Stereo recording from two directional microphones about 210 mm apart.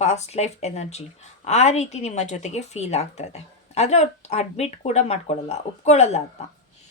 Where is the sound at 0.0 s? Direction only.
30° left (ahead or behind).